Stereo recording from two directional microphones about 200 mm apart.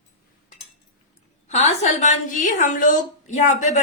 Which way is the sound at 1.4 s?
35° left (ahead or behind).